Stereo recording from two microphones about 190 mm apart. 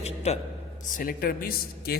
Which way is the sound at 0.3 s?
35° left (ahead or behind).